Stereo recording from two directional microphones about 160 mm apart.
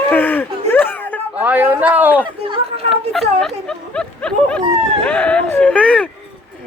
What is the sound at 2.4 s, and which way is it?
Chatter, 35° right (ahead or behind).